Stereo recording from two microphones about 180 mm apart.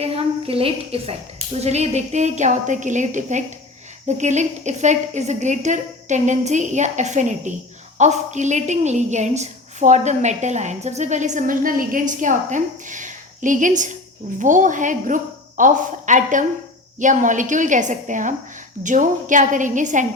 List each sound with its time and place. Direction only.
0.0 s a woman's voice: 35° right (ahead or behind)